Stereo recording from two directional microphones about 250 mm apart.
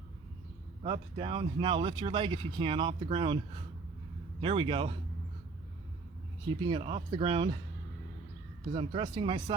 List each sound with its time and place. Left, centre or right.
0.8 s speech: right
6.6 s speech: centre
8.7 s speech: centre